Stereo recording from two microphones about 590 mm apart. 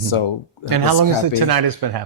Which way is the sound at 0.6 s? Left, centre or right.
Right.